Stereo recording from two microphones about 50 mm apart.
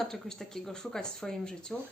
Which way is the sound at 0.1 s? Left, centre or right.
Centre.